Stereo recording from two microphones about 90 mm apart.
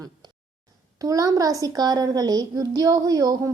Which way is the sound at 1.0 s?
40° right (ahead or behind).